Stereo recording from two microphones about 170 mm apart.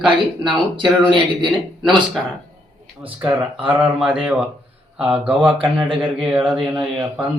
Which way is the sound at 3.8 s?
5° right (ahead or behind).